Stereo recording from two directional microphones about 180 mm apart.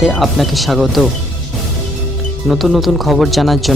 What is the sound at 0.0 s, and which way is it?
Speech, centre (ahead or behind).